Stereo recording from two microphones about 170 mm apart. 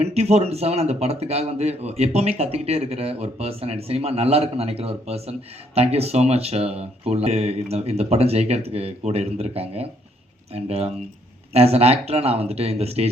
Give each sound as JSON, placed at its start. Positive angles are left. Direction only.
{"t": 0.0, "sound": "a man's voice", "side_deg": -35}